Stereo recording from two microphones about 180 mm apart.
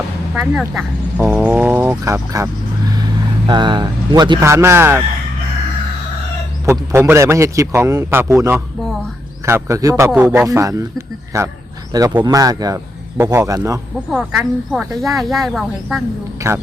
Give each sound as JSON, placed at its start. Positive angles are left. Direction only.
{"t": 0.6, "sound": "a man's voice", "side_deg": -10}
{"t": 6.7, "sound": "a man's voice", "side_deg": -15}
{"t": 14.1, "sound": "speech", "side_deg": 0}
{"t": 16.4, "sound": "a man's voice", "side_deg": -15}